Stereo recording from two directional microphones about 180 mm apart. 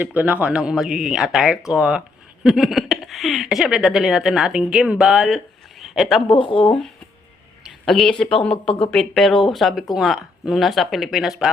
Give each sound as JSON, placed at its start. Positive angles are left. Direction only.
{"t": 0.0, "sound": "speech", "side_deg": -10}
{"t": 6.2, "sound": "speech", "side_deg": 30}
{"t": 7.9, "sound": "speech", "side_deg": 0}